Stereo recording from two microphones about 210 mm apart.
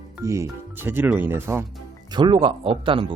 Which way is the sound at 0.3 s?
15° right (ahead or behind).